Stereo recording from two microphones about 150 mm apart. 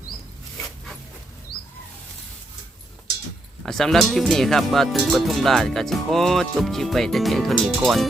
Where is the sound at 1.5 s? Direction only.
30° left (ahead or behind).